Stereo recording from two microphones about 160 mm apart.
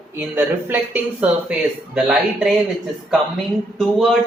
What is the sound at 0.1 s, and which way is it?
Speech, 15° right (ahead or behind).